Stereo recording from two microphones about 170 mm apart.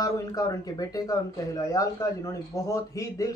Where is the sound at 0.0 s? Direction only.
20° left (ahead or behind).